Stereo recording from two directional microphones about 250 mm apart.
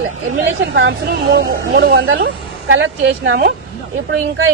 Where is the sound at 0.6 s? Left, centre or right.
Right.